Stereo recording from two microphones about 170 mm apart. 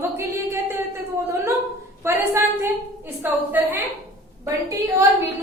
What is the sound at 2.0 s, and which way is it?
Speech, 15° right (ahead or behind).